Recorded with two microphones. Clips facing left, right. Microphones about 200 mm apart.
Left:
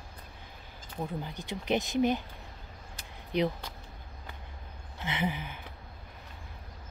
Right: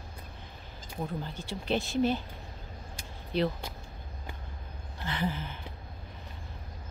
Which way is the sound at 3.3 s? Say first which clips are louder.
Even; 15° left (ahead or behind).